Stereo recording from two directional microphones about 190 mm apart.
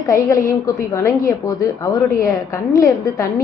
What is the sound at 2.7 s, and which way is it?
Speech, 20° left (ahead or behind).